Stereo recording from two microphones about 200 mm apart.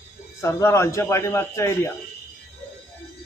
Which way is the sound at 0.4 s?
15° left (ahead or behind).